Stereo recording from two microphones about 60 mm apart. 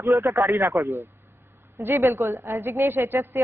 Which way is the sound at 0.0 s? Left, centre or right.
Right.